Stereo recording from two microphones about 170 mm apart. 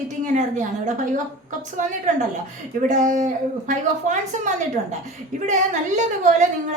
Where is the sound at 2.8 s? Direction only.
50° right (ahead or behind).